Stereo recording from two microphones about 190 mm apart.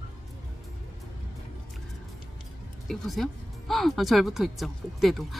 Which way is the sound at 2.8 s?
Centre (ahead or behind).